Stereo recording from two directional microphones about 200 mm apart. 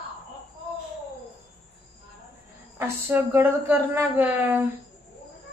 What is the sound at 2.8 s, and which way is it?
Speech, 10° right (ahead or behind).